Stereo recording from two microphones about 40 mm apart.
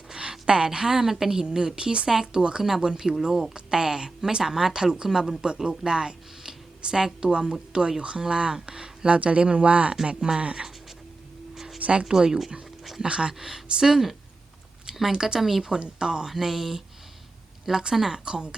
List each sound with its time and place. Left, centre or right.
0.1 s a woman's voice: right
2.6 s speech: centre
9.0 s speech: right
10.2 s speech: centre
11.5 s a sound: centre
11.8 s speech: right
12.0 s speech: centre
13.4 s speech: centre
15.4 s speech: centre